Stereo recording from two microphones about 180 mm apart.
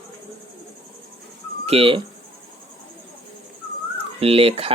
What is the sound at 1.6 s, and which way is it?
Speech, 30° right (ahead or behind).